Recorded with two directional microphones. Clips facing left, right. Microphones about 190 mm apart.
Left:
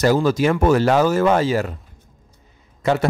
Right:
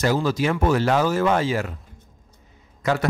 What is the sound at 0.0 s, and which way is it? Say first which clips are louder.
Speech: left 5 dB; 45° left (ahead or behind).